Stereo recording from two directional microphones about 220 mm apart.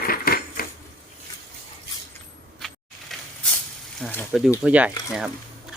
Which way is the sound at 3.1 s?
Centre (ahead or behind).